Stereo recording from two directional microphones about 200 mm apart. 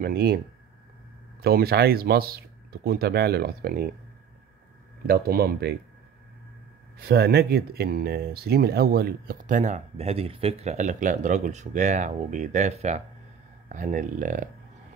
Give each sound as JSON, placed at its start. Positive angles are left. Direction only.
{"t": 0.0, "sound": "speech", "side_deg": -50}
{"t": 1.4, "sound": "speech", "side_deg": -50}
{"t": 5.0, "sound": "speech", "side_deg": -50}
{"t": 7.0, "sound": "speech", "side_deg": -50}